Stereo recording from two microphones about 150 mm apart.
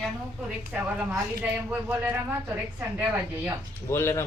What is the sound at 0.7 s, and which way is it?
Speech, centre (ahead or behind).